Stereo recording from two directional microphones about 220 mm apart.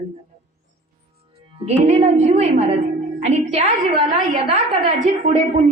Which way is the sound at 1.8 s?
30° right (ahead or behind).